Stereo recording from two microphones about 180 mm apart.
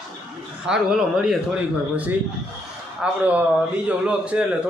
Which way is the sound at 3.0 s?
10° right (ahead or behind).